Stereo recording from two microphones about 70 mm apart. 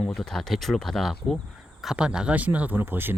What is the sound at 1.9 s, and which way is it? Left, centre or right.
Speech, centre.